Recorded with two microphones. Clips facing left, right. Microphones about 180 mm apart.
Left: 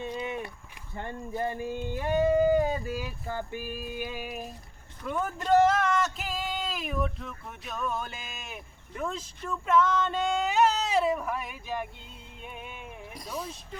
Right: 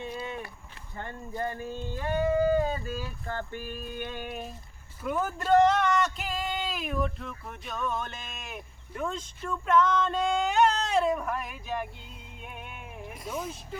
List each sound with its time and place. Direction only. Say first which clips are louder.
0.2 s a sound: left 3 dB; 15° left (ahead or behind)
1.4 s speech: left 2 dB; 15° left (ahead or behind); by 12.9 s centre (ahead or behind)
13.1 s speech: right 2 dB; 35° left (ahead or behind)